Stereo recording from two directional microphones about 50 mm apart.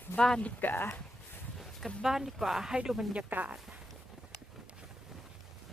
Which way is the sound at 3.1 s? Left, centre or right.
Right.